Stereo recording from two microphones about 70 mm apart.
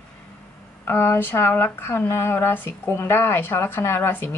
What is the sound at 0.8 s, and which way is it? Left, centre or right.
Speech, left.